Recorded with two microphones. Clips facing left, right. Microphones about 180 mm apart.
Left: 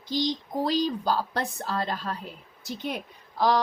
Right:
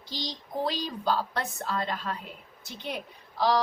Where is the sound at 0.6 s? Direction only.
40° left (ahead or behind).